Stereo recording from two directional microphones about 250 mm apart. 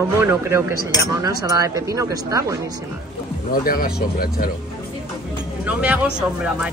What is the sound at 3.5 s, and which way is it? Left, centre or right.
Speech, left.